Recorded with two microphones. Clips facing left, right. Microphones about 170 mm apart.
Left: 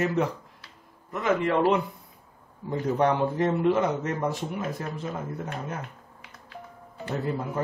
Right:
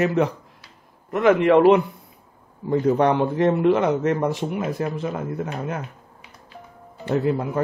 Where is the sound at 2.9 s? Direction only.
75° right (ahead or behind).